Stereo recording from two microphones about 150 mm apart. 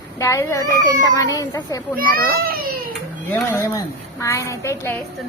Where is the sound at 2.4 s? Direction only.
90° right.